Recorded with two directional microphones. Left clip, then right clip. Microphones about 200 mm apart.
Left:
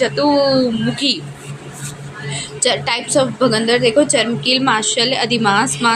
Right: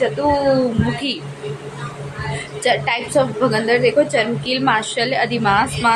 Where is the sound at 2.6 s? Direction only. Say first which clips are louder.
Even; 25° left (ahead or behind).